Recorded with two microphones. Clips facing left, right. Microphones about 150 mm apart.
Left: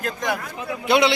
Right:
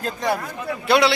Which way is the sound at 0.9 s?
20° left (ahead or behind).